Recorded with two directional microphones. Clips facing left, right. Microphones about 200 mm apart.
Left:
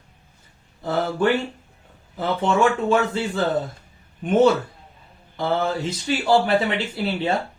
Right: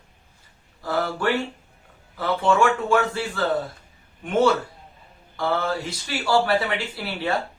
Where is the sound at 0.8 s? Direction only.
20° left (ahead or behind).